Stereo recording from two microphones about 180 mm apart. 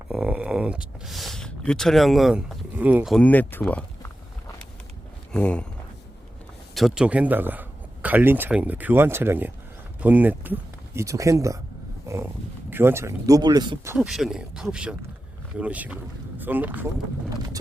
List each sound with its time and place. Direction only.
0.1 s speech: 5° right (ahead or behind)
3.2 s speech: 10° left (ahead or behind)
5.3 s speech: 5° left (ahead or behind)
6.7 s speech: centre (ahead or behind); by 11.6 s 15° right (ahead or behind)
12.0 s roaring cats: 15° right (ahead or behind)
12.7 s speech: 15° right (ahead or behind)
14.1 s speech: centre (ahead or behind)